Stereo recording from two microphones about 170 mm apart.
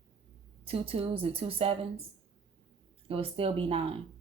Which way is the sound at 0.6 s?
35° right (ahead or behind).